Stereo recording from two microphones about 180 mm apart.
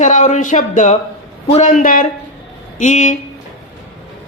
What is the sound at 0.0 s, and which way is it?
Speech, 45° left (ahead or behind).